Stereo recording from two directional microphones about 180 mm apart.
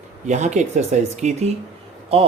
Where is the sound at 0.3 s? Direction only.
40° right (ahead or behind).